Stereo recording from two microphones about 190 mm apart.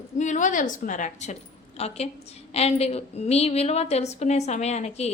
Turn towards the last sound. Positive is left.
turn(degrees=35)  # may be behind; listen again after turning